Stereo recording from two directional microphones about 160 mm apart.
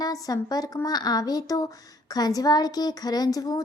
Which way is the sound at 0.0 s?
20° left (ahead or behind).